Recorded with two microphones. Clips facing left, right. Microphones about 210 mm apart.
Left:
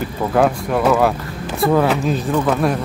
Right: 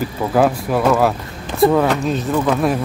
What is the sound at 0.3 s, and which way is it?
Speech, centre (ahead or behind).